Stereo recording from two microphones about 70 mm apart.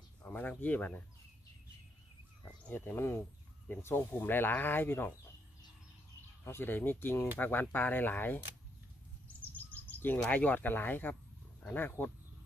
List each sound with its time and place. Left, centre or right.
0.2 s speech: left
2.4 s speech: left
6.4 s speech: left
9.4 s a sound: left
10.3 s speech: left